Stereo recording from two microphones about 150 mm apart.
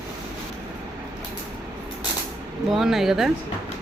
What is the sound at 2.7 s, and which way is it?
Speech, centre (ahead or behind).